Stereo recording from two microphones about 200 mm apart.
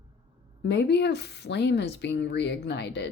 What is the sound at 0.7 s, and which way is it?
Speech, 60° left (ahead or behind).